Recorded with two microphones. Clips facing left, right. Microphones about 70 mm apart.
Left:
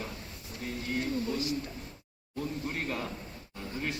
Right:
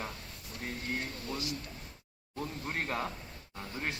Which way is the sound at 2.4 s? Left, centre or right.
Right.